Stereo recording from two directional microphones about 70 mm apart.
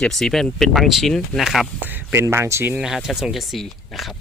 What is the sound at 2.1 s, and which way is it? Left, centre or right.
Speech, right.